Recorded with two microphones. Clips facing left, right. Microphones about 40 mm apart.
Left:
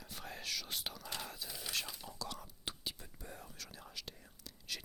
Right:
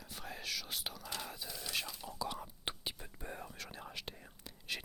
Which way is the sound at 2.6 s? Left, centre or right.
Right.